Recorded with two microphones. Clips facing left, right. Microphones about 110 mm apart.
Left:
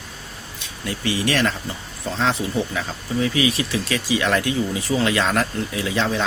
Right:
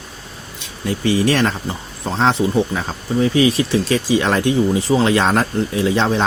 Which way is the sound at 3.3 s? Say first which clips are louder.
Right 6 dB; 35° right (ahead or behind).